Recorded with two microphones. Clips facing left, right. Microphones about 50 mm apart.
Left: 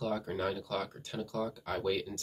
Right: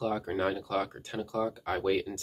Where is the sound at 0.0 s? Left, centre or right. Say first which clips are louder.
Right 4 dB; right.